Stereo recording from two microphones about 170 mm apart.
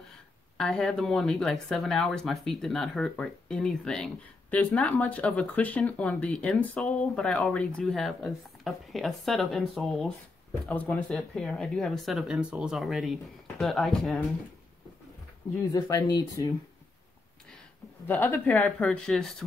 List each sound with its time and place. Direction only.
0.6 s speech: centre (ahead or behind)
15.7 s speech: 25° left (ahead or behind)
18.0 s speech: 10° left (ahead or behind)